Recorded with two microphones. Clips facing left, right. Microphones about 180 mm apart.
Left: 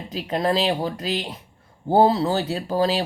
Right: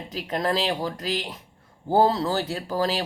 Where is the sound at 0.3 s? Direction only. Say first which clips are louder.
Left 3 dB; 20° left (ahead or behind).